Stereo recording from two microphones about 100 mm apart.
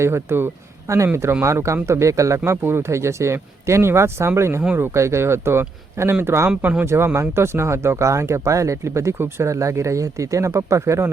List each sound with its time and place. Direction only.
0.0 s speech: 25° right (ahead or behind)
4.6 s speech: 15° right (ahead or behind)
4.9 s speech: 30° right (ahead or behind)
6.5 s speech: 15° right (ahead or behind)
6.8 s speech: 25° right (ahead or behind)